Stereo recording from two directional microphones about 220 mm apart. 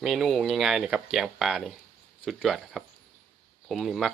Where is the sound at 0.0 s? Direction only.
Centre (ahead or behind).